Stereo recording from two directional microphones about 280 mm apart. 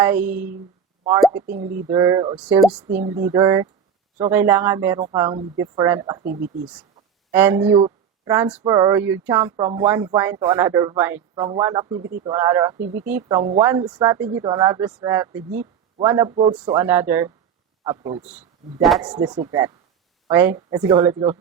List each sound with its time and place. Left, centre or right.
0.0 s speech: centre
1.5 s speech: right
1.7 s a woman's voice: centre
6.2 s speech: right
7.3 s speech: centre
18.3 s speech: centre
19.0 s speech: centre